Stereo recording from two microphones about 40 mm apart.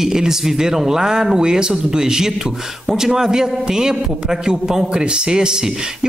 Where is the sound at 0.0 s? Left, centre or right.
Centre.